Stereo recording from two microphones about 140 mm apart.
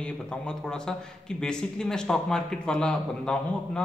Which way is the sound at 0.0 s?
5° left (ahead or behind).